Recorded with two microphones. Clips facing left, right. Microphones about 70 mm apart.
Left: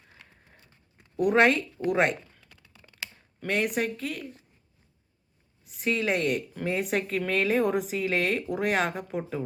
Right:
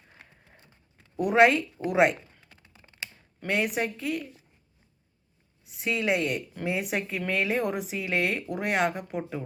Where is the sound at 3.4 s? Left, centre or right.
Centre.